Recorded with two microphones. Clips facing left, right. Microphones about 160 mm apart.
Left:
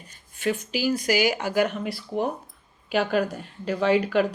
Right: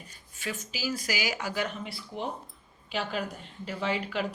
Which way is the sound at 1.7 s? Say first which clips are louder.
Left 8 dB; 80° left.